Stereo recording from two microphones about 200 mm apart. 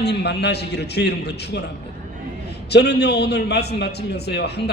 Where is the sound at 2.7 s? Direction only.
55° left (ahead or behind).